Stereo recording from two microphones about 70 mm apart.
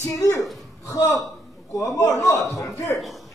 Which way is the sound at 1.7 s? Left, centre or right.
Left.